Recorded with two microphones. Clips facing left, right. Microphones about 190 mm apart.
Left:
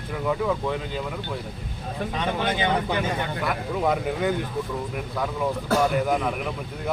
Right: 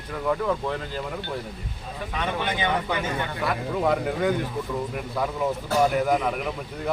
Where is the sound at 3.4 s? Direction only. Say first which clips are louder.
Right 1 dB; centre (ahead or behind).